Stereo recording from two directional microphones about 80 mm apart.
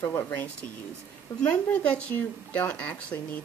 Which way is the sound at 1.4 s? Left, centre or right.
Centre.